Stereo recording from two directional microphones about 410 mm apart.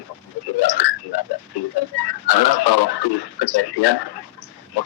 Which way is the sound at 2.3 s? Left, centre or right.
Left.